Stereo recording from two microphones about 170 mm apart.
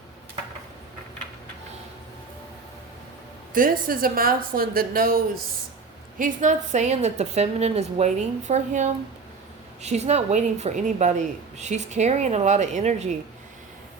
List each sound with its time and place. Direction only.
3.5 s a woman's voice: 55° right (ahead or behind)
6.1 s speech: 50° right (ahead or behind)